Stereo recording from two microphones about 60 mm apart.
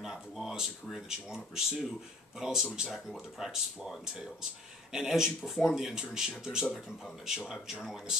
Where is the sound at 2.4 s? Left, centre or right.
Centre.